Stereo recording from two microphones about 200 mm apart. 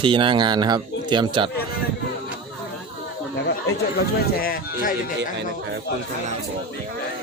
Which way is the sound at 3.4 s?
55° left (ahead or behind).